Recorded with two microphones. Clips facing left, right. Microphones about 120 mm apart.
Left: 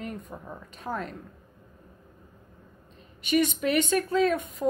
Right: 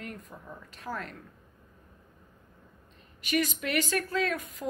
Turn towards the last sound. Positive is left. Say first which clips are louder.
# left 6 dB
turn(degrees=25)  # may be behind; listen again after turning